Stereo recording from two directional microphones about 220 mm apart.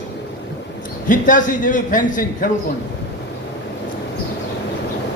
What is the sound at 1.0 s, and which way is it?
A man's voice, 35° left (ahead or behind).